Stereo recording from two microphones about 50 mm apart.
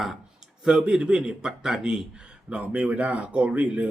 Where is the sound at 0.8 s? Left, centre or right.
Centre.